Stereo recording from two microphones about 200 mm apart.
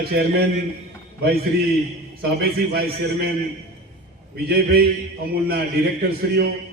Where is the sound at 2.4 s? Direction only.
55° right (ahead or behind).